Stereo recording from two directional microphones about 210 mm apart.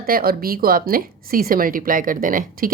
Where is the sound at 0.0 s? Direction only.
45° right (ahead or behind).